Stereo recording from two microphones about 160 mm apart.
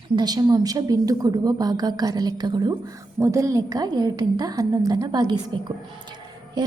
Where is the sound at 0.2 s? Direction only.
25° right (ahead or behind).